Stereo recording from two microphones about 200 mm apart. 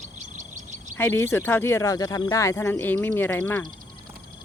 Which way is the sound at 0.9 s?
10° left (ahead or behind).